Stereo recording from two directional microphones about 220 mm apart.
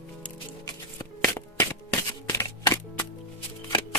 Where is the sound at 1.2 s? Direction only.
10° left (ahead or behind).